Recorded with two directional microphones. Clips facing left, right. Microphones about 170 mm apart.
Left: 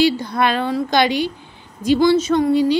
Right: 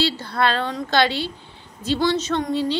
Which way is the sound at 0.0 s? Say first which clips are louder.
Left 5 dB; 15° left (ahead or behind).